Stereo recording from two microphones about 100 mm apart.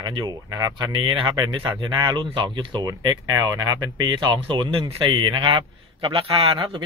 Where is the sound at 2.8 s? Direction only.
40° right (ahead or behind); by 6.7 s 60° right (ahead or behind).